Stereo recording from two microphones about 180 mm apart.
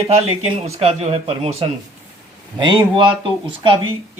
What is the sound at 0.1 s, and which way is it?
Speech, 35° right (ahead or behind).